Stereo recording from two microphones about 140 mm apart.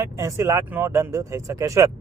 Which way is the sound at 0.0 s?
20° right (ahead or behind).